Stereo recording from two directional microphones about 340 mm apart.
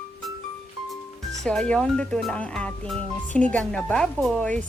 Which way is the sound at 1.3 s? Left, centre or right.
Centre.